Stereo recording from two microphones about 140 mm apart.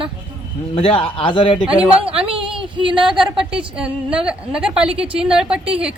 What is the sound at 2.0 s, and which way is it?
Speech, 40° right (ahead or behind).